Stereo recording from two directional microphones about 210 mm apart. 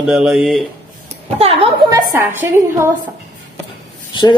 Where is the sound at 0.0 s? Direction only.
Centre (ahead or behind).